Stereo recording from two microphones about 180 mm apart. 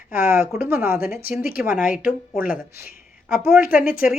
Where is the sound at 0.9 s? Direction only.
55° left (ahead or behind).